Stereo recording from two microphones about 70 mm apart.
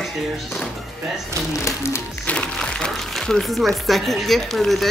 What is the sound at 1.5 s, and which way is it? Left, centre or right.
Music, left.